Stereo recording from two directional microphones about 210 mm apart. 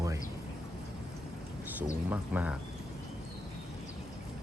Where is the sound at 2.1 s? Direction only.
5° right (ahead or behind).